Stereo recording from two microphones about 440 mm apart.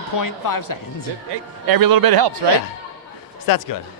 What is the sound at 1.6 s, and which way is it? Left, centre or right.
Speech, right.